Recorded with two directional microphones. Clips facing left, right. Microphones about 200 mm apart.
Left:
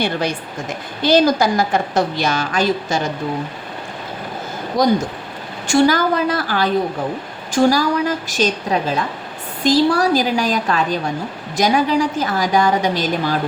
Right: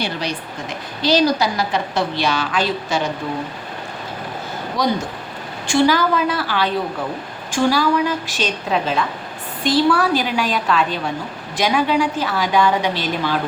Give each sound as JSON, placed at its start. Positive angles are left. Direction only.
{"t": 0.0, "sound": "a woman's voice", "side_deg": 50}
{"t": 5.7, "sound": "a woman's voice", "side_deg": 45}